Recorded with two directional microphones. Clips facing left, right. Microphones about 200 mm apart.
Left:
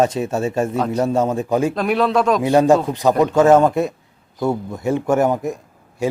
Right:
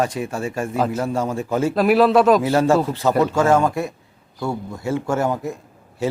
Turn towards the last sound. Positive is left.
turn(degrees=15)  # may be behind; listen again after turning